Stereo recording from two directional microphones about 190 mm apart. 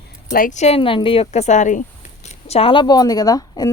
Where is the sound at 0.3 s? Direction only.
45° left (ahead or behind).